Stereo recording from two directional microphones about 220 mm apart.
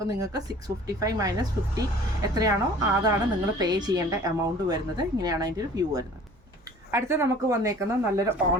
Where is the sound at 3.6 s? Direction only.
20° right (ahead or behind).